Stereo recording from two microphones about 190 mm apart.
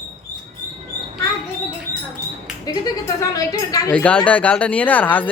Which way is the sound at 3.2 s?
20° left (ahead or behind).